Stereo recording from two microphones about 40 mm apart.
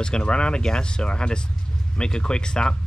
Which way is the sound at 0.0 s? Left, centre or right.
Left.